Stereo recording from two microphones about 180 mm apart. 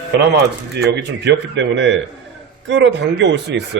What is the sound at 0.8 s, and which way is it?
A man's voice, 65° right (ahead or behind).